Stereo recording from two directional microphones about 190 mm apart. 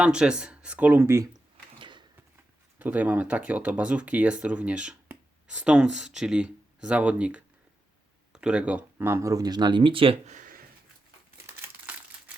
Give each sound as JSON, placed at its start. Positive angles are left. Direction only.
{"t": 0.0, "sound": "speech", "side_deg": -5}
{"t": 1.8, "sound": "a sound", "side_deg": -25}
{"t": 2.7, "sound": "speech", "side_deg": -10}
{"t": 11.3, "sound": "crumpling", "side_deg": -15}